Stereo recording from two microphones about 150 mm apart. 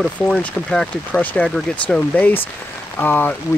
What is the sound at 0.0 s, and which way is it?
Speech, 5° left (ahead or behind).